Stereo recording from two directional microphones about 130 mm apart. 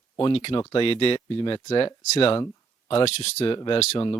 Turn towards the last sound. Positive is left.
turn(degrees=35)  # may be behind; listen again after turning